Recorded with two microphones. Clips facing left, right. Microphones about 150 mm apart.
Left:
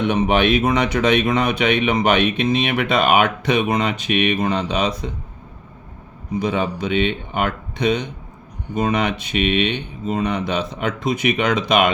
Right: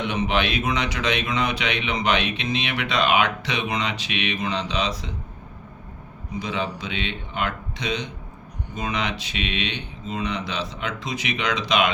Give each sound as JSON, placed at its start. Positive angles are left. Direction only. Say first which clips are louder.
{"t": 0.0, "sound": "speech", "louder": "left 7 dB", "side_deg": 50}
{"t": 6.4, "sound": "speech", "louder": "left 7 dB", "side_deg": 55}